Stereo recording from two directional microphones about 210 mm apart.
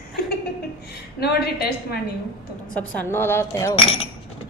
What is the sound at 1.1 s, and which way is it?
Speech, 50° left (ahead or behind).